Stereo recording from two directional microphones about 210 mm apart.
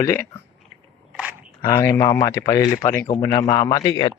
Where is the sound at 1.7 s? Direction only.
15° left (ahead or behind).